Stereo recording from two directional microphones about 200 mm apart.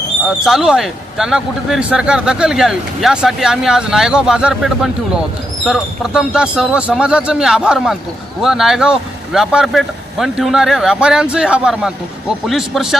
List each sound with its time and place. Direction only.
0.3 s speech: centre (ahead or behind)